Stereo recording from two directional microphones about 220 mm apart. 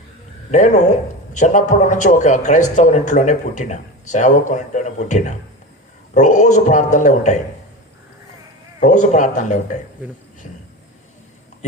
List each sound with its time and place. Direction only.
0.5 s a man's voice: 35° left (ahead or behind)
8.8 s a man's voice: 35° left (ahead or behind)